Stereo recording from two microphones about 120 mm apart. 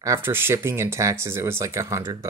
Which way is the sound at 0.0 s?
20° right (ahead or behind).